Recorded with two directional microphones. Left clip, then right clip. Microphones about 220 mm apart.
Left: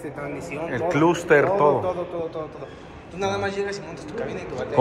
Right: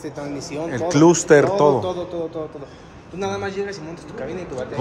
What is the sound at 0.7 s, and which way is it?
Speech, 20° right (ahead or behind).